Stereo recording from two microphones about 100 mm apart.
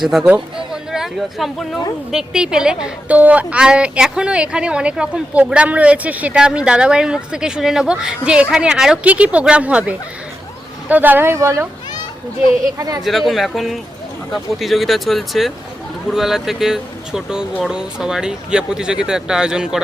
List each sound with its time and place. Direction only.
0.0 s a woman's voice: 5° right (ahead or behind); by 11.7 s 30° right (ahead or behind)
13.1 s a woman's voice: centre (ahead or behind)